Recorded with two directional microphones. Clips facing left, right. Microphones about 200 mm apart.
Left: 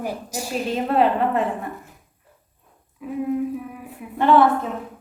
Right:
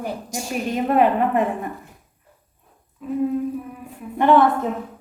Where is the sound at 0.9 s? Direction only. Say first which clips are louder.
Right 2 dB; 15° right (ahead or behind).